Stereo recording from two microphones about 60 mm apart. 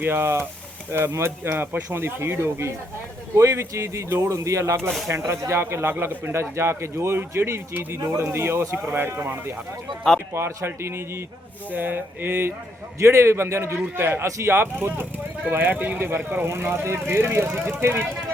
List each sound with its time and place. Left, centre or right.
0.0 s speech: right
5.0 s speech: right
6.3 s speech: right
7.2 s a sound: right
7.9 s speech: right
11.7 s a sound: right
13.0 s speech: right
14.4 s a sound: right
16.4 s speech: right